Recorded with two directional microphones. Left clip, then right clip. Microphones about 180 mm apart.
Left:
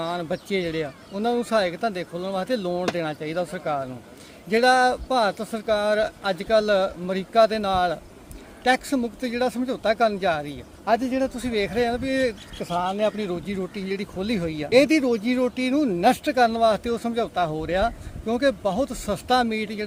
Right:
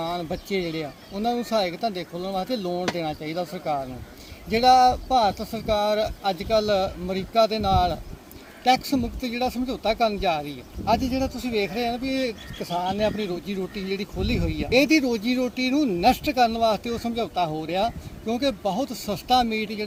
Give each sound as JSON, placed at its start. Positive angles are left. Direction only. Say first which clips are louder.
{"t": 0.0, "sound": "speech", "louder": "left 1 dB", "side_deg": 10}
{"t": 4.7, "sound": "speech", "louder": "right 7 dB", "side_deg": 35}
{"t": 5.1, "sound": "speech", "louder": "right 1 dB", "side_deg": 15}